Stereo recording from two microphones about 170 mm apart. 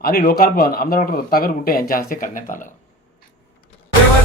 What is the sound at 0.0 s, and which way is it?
Speech, 60° left (ahead or behind).